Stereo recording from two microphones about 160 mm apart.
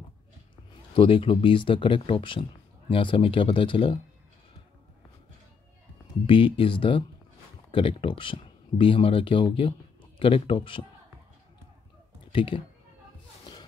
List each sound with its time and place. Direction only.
0.9 s speech: 35° left (ahead or behind)
6.2 s speech: 30° left (ahead or behind)
12.3 s speech: 35° left (ahead or behind)